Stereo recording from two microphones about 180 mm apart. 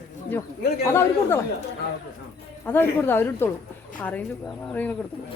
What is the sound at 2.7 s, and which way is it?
A woman's voice, 10° left (ahead or behind).